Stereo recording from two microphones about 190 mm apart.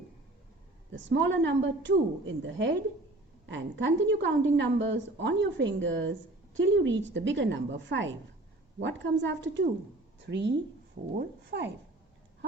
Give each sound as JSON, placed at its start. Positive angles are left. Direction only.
{"t": 0.9, "sound": "a woman's voice", "side_deg": -75}